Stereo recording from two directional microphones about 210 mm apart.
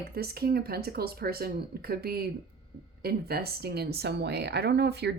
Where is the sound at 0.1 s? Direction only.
45° right (ahead or behind).